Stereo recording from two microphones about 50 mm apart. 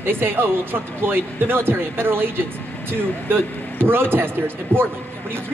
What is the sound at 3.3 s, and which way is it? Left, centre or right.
Speech, right.